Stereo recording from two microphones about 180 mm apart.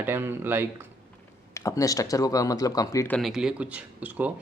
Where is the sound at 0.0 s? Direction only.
10° right (ahead or behind).